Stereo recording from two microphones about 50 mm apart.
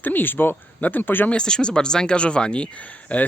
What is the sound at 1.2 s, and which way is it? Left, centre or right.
Speech, centre.